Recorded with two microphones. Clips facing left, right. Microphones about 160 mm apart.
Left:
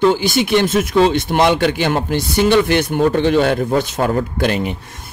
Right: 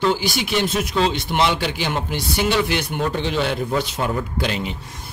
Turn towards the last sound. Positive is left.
turn(degrees=55)  # may be behind; listen again after turning